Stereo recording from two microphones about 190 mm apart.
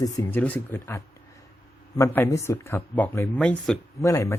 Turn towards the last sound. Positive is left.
turn(degrees=15)  # may be behind; listen again after turning